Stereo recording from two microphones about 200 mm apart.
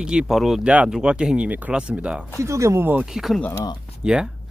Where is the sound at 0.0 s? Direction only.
5° right (ahead or behind).